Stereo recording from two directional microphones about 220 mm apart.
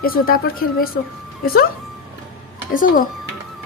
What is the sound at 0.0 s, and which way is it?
Speech, 40° left (ahead or behind).